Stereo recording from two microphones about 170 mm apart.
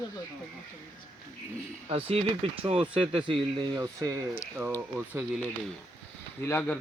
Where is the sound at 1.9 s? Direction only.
35° right (ahead or behind).